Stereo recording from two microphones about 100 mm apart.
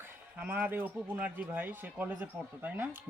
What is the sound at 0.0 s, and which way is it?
Speech, 20° right (ahead or behind).